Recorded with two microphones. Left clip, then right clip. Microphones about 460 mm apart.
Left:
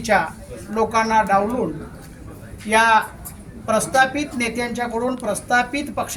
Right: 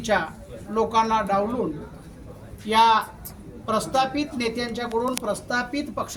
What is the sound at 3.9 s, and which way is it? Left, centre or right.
Speech, right.